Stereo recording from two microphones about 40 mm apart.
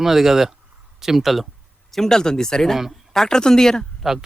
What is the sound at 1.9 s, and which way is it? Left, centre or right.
Speech, centre.